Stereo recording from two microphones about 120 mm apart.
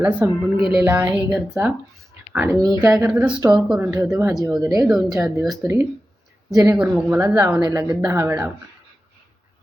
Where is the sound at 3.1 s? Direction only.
10° right (ahead or behind).